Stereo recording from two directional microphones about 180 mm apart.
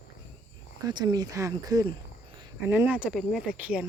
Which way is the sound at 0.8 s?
25° right (ahead or behind).